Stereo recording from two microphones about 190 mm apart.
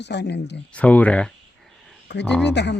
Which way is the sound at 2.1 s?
65° left (ahead or behind).